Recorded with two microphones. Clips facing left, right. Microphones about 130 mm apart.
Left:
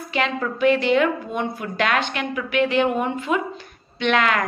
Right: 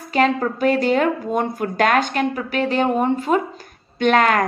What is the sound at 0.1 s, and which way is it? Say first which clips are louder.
A woman's voice: right 6 dB; 40° right (ahead or behind).